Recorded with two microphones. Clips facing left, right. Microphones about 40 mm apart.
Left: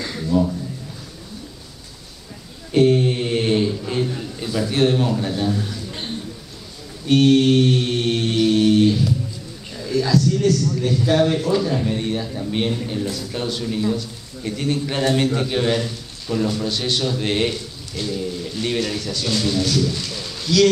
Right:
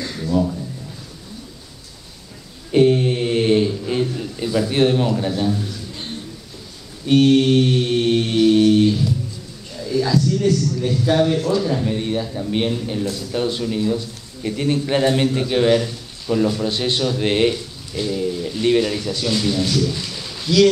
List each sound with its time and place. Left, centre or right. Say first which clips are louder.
0.2 s speech: even; centre
2.7 s mantra: right 1 dB; centre
4.2 s a man's voice: right 3 dB; centre
7.1 s mantra: right 1 dB; centre
9.8 s a sound: even; centre
10.8 s mantra: left 1 dB; centre
14.4 s a man's voice: right 2 dB; centre
16.6 s a man's voice: right 2 dB; right
17.0 s a man's voice: right 5 dB; centre